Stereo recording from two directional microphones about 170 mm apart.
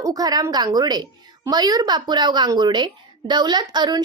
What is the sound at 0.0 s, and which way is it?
A woman's voice, 20° right (ahead or behind).